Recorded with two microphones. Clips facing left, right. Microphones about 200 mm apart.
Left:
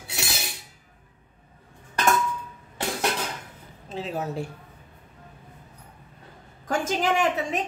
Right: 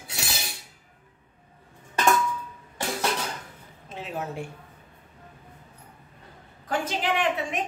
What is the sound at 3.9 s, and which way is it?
Speech, 40° left (ahead or behind).